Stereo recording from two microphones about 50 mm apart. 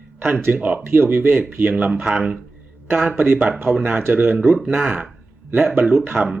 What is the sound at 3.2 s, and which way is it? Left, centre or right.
Speech, right.